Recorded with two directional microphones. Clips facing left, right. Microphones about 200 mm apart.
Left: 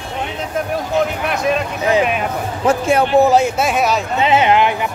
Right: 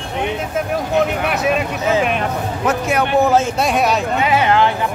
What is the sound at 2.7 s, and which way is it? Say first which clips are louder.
Speech: left 4 dB; 30° left (ahead or behind).